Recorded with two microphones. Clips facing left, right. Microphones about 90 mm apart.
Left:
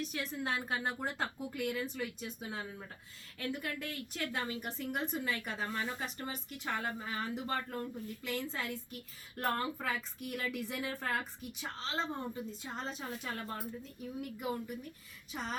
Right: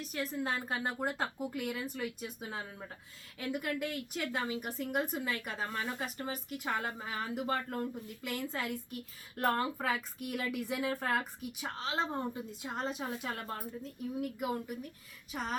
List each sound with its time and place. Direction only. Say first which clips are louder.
0.0 s a woman's voice: right 2 dB; centre (ahead or behind)